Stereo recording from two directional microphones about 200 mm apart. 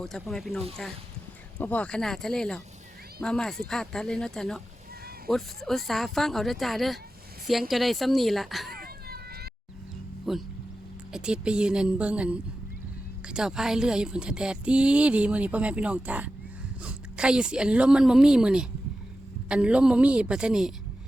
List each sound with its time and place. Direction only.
0.0 s a woman's voice: centre (ahead or behind)
5.6 s a woman's voice: centre (ahead or behind)
8.7 s vehicle: 50° right (ahead or behind)
10.3 s a woman's voice: centre (ahead or behind)